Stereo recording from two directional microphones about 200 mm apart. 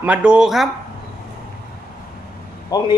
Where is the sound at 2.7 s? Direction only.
20° left (ahead or behind).